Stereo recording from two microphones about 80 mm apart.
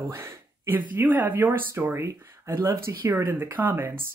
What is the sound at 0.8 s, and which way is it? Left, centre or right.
Speech, right.